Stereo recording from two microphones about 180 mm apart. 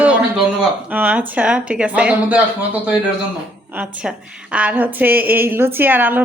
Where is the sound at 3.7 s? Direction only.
10° right (ahead or behind).